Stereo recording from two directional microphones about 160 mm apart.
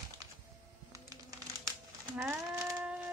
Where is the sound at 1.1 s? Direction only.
20° right (ahead or behind).